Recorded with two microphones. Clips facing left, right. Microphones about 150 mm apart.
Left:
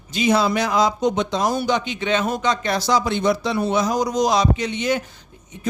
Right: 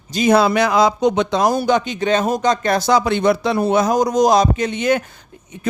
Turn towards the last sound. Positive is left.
turn(degrees=-55)  # may be behind; listen again after turning